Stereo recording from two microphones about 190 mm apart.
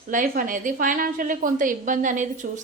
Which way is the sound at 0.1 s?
45° right (ahead or behind).